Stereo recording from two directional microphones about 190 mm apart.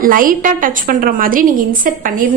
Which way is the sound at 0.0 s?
45° right (ahead or behind).